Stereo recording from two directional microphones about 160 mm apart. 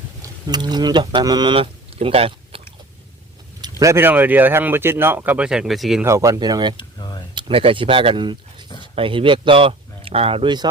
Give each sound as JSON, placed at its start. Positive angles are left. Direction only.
{"t": 0.2, "sound": "speech", "side_deg": -25}
{"t": 3.6, "sound": "speech", "side_deg": -20}
{"t": 6.1, "sound": "speech", "side_deg": -20}
{"t": 6.7, "sound": "a sound", "side_deg": 25}
{"t": 7.3, "sound": "speech", "side_deg": -35}